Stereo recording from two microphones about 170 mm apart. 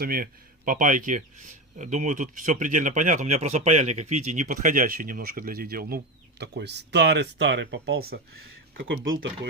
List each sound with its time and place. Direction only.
0.0 s speech: 60° right (ahead or behind)
6.4 s speech: 80° right